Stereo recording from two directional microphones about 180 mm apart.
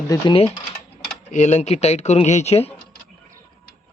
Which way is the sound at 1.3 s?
40° left (ahead or behind).